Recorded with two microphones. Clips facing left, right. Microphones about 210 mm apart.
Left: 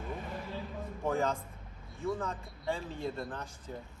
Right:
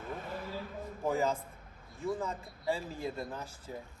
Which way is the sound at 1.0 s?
5° right (ahead or behind).